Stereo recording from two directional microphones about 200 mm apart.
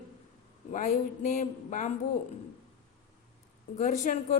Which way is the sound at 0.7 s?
35° left (ahead or behind).